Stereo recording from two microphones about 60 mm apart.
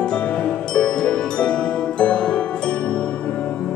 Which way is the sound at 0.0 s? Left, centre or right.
Centre.